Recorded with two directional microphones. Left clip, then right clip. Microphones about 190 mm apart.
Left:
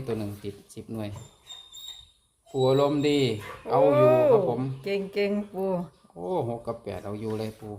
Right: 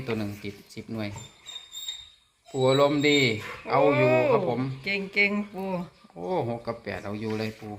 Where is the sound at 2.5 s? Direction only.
Centre (ahead or behind).